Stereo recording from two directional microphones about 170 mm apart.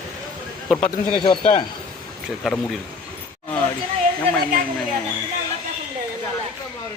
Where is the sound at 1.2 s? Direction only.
30° left (ahead or behind).